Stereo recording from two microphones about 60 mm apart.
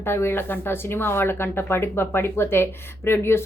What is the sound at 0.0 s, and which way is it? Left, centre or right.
Speech, left.